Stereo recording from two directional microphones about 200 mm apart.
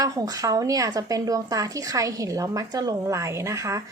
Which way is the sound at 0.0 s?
20° right (ahead or behind).